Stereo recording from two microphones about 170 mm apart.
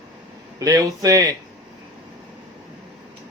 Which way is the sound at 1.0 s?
20° right (ahead or behind).